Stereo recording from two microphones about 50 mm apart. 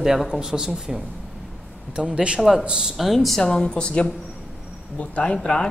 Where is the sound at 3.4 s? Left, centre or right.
Centre.